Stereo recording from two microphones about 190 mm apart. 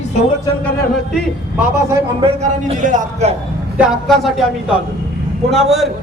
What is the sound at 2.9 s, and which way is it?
Music, 40° right (ahead or behind).